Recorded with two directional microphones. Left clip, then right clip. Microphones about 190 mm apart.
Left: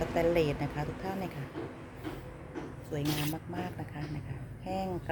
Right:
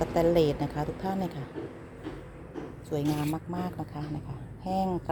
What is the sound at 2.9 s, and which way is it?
A woman's voice, 25° right (ahead or behind).